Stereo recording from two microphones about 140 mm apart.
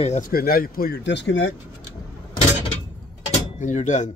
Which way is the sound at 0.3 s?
90° left.